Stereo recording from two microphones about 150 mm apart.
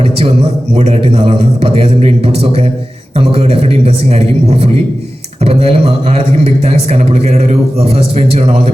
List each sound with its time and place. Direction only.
0.7 s a man's voice: 45° right (ahead or behind)